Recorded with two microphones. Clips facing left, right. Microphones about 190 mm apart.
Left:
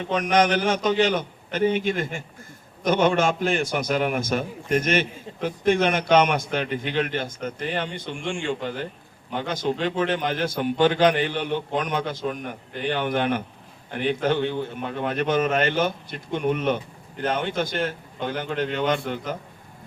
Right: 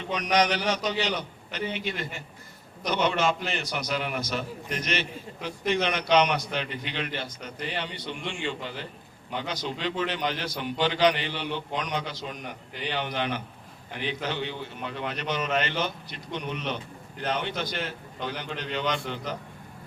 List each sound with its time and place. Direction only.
0.0 s a man's voice: 50° left (ahead or behind)